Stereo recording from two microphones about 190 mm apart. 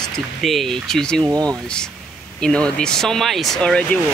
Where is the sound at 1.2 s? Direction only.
20° right (ahead or behind).